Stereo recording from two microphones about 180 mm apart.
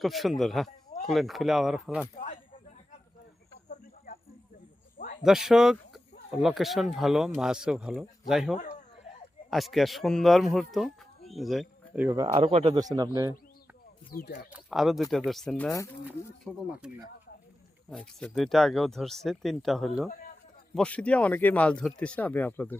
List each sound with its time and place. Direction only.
0.0 s speech: centre (ahead or behind)
5.2 s speech: centre (ahead or behind)
8.5 s speech: 40° left (ahead or behind)
9.5 s speech: centre (ahead or behind)
12.0 s speech: 20° right (ahead or behind)
12.3 s speech: 30° right (ahead or behind)
14.1 s speech: 55° left (ahead or behind)
14.5 s speech: centre (ahead or behind)